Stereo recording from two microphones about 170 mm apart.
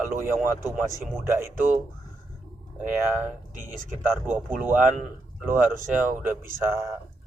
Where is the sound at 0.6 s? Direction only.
15° right (ahead or behind).